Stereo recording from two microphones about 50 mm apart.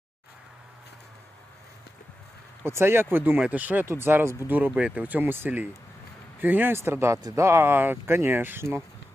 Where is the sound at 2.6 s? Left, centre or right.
Right.